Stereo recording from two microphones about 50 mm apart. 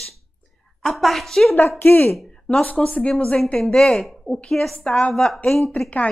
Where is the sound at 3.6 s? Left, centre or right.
Centre.